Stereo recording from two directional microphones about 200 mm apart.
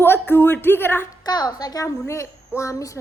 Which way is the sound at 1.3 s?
20° left (ahead or behind).